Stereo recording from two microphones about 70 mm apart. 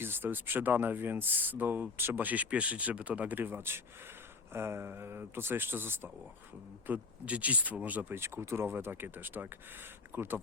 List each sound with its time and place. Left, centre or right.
0.0 s speech: right
8.1 s speech: right